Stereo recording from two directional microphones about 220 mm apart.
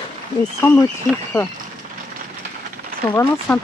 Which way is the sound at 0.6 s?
10° left (ahead or behind).